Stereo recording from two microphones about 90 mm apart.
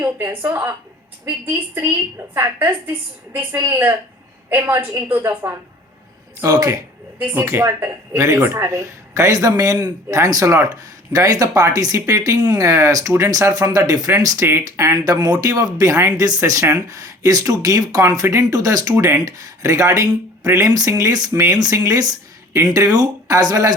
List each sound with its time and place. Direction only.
0.0 s a woman's voice: 25° right (ahead or behind)
5.2 s speech: 35° right (ahead or behind)
7.2 s a woman's voice: 25° right (ahead or behind)
14.4 s speech: 30° right (ahead or behind)
16.4 s speech: 35° right (ahead or behind)
18.5 s speech: 45° right (ahead or behind)